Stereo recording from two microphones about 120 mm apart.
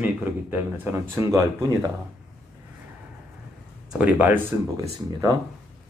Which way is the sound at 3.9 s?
15° right (ahead or behind).